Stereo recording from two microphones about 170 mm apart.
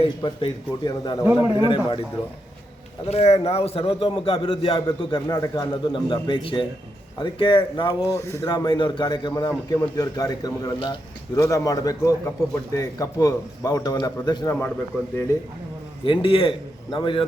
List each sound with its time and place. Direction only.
0.0 s a man's voice: 30° left (ahead or behind)
1.3 s a man's voice: 15° right (ahead or behind)
1.6 s a man's voice: 30° left (ahead or behind)
3.1 s a man's voice: 40° left (ahead or behind)
8.1 s a man's voice: 15° left (ahead or behind)
16.0 s a man's voice: 30° left (ahead or behind)